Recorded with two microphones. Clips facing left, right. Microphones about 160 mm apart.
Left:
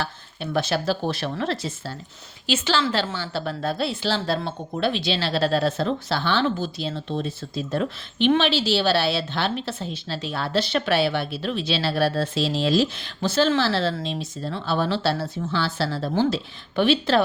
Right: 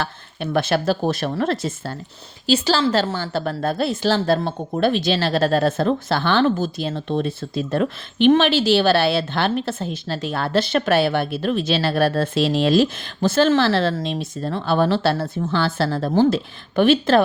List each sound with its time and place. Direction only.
0.0 s a woman's voice: 55° right (ahead or behind)
2.5 s a woman's voice: 35° right (ahead or behind)